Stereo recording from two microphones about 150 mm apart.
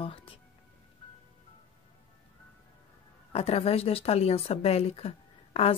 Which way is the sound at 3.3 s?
40° left (ahead or behind).